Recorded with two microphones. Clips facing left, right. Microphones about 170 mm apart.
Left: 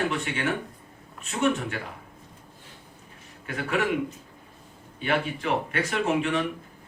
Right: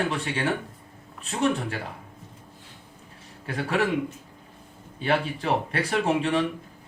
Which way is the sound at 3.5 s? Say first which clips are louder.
Right 1 dB; 30° right (ahead or behind).